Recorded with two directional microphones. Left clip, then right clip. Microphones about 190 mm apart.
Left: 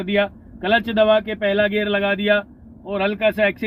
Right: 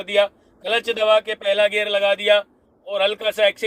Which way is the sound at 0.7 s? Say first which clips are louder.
Left 1 dB; 45° right (ahead or behind).